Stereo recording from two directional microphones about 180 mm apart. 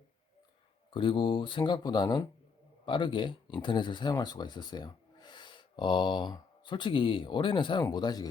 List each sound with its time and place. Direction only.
0.9 s speech: 25° left (ahead or behind)